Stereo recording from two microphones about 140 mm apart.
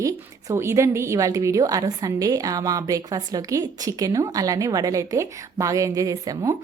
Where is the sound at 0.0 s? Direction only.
20° right (ahead or behind).